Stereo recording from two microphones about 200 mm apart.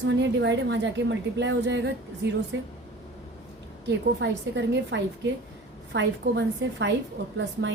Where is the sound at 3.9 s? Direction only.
60° right (ahead or behind).